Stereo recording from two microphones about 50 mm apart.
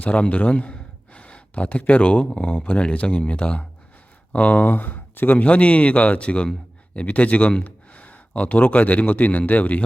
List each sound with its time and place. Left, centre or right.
0.0 s gasp: left
1.8 s speech: left